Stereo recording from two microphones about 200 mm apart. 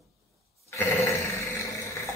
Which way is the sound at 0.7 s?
15° left (ahead or behind).